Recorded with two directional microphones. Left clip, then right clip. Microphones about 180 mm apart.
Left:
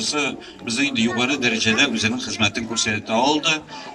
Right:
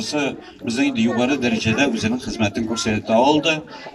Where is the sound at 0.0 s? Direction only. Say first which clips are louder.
Even; 45° right (ahead or behind).